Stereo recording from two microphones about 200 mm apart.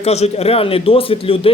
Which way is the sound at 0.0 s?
30° left (ahead or behind).